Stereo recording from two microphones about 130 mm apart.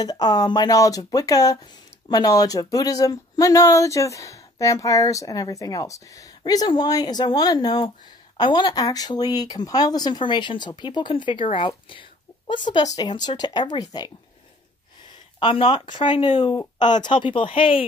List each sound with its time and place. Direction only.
0.0 s speech: 30° left (ahead or behind)
15.3 s speech: 45° left (ahead or behind)